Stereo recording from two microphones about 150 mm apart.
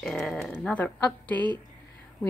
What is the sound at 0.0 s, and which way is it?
A woman's voice, 5° left (ahead or behind).